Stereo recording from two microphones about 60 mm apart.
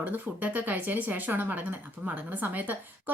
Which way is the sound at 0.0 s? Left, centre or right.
Right.